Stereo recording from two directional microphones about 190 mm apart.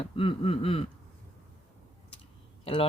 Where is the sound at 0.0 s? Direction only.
30° left (ahead or behind).